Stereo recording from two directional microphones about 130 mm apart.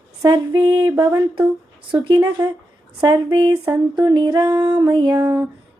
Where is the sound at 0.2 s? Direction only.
30° right (ahead or behind).